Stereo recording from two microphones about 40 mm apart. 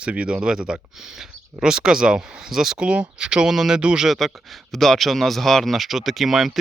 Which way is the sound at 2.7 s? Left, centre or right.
Right.